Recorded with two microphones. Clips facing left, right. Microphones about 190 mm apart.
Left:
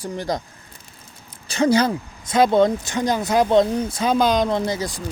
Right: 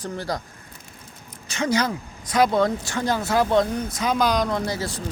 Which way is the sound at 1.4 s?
35° left (ahead or behind).